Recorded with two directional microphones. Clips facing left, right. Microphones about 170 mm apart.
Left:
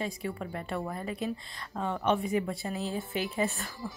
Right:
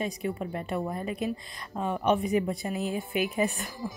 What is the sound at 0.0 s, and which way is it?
A woman's voice, 20° right (ahead or behind).